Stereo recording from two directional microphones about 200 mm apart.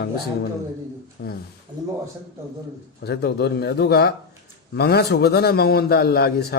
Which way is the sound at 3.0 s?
55° left (ahead or behind).